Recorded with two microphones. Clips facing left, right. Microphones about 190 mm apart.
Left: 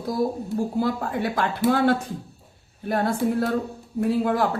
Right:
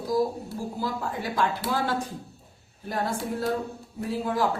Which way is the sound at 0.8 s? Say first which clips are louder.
Left 6 dB; 60° left (ahead or behind).